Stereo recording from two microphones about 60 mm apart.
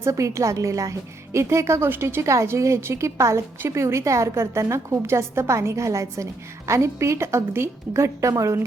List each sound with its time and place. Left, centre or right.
0.0 s a woman's voice: right
1.4 s a woman's voice: right
1.9 s a woman's voice: right
2.2 s a woman's voice: right